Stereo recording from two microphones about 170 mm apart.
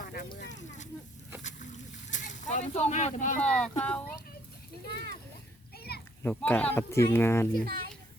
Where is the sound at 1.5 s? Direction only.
45° left (ahead or behind).